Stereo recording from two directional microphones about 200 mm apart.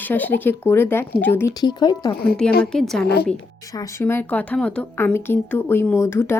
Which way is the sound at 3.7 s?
15° left (ahead or behind).